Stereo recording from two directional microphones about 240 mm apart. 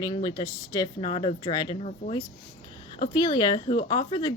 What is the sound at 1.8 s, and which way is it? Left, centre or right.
Speech, left.